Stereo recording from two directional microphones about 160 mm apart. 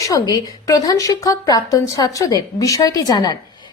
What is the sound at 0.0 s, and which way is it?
A woman's voice, 20° left (ahead or behind).